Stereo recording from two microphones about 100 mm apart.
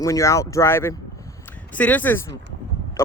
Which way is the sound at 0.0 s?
30° left (ahead or behind).